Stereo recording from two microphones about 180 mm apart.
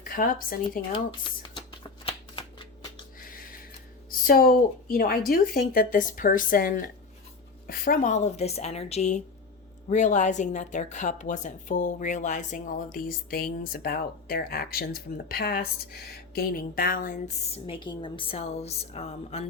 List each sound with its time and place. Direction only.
0.0 s speech: 50° left (ahead or behind)
1.8 s shuffling cards: 30° left (ahead or behind)
3.2 s a sound: 50° left (ahead or behind)
4.1 s speech: 55° left (ahead or behind); by 19.5 s 35° left (ahead or behind)